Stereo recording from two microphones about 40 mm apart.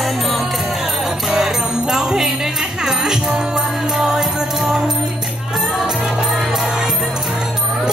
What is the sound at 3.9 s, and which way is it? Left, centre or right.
Music, centre.